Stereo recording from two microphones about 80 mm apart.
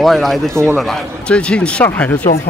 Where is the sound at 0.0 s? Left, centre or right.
Centre.